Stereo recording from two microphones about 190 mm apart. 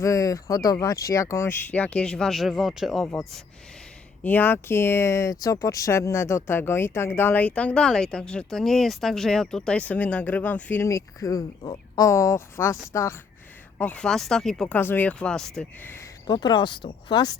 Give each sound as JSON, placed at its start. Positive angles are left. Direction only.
{"t": 0.0, "sound": "speech", "side_deg": 15}
{"t": 16.2, "sound": "speech", "side_deg": 25}